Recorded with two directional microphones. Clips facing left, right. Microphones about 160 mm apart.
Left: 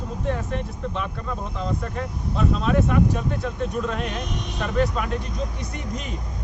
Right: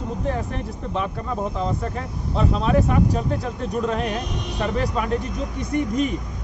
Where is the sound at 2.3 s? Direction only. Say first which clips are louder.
Right 2 dB; 35° right (ahead or behind).